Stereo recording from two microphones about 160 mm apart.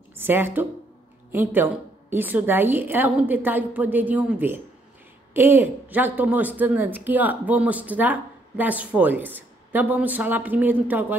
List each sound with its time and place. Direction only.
0.2 s speech: 15° right (ahead or behind)